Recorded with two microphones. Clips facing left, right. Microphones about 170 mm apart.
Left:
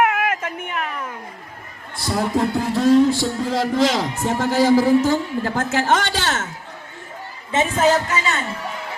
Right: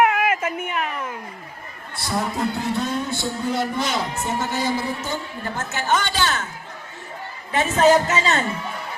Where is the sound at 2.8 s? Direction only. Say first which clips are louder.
Left 11 dB; 90° left.